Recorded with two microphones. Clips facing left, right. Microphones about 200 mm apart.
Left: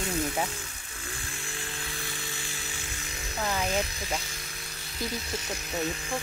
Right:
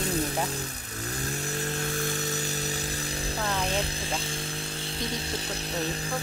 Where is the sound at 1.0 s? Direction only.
40° right (ahead or behind).